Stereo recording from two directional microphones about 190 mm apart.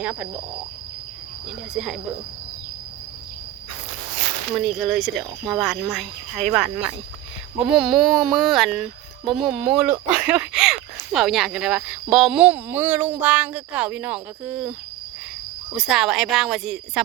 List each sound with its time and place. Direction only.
0.0 s speech: 5° right (ahead or behind)
1.5 s speech: centre (ahead or behind)
4.5 s speech: centre (ahead or behind)
15.7 s speech: centre (ahead or behind)